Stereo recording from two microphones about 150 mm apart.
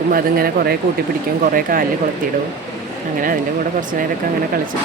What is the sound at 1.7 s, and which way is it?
Speech, 70° right (ahead or behind).